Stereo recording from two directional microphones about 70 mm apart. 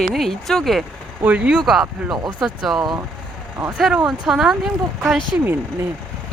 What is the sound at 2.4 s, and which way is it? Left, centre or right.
Speech, centre.